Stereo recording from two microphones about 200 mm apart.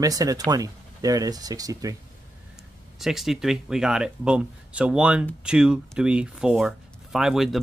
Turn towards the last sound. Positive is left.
turn(degrees=0)  # may be behind; listen again after turning